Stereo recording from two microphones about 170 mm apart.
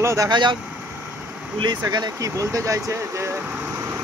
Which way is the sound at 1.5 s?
25° right (ahead or behind).